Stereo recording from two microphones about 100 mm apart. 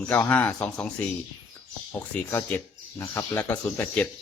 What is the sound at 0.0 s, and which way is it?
Speech, 15° left (ahead or behind).